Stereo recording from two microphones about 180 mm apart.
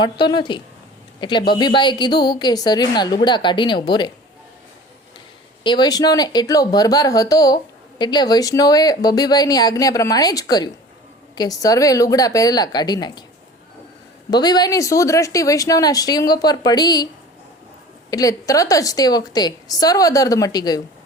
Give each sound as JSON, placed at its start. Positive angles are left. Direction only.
{"t": 0.0, "sound": "speech", "side_deg": 25}
{"t": 5.6, "sound": "speech", "side_deg": 25}
{"t": 14.3, "sound": "speech", "side_deg": 20}
{"t": 18.1, "sound": "speech", "side_deg": 20}